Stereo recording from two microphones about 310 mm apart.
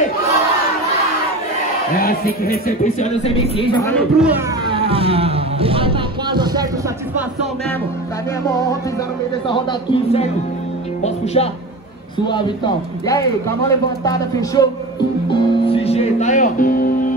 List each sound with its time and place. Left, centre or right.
2.0 s speech: left
3.9 s speech: centre
4.6 s vehicle: centre
9.5 s speech: centre
11.4 s speech: centre
15.3 s music: centre